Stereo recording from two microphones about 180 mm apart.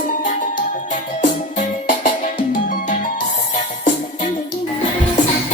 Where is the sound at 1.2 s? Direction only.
40° left (ahead or behind).